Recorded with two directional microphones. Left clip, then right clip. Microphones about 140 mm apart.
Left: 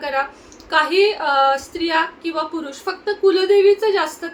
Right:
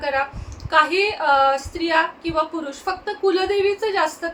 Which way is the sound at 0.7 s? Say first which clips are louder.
Left 2 dB; 15° left (ahead or behind).